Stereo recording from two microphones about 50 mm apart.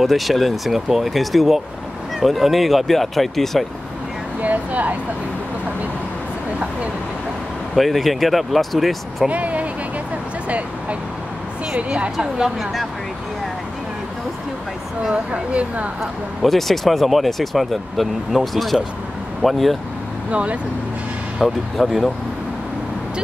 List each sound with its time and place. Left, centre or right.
0.0 s speech: centre
4.4 s speech: right
7.7 s speech: centre
9.3 s speech: right
11.9 s a woman's voice: centre
15.0 s a woman's voice: right
16.0 s speech: centre
20.2 s a woman's voice: right
21.4 s speech: centre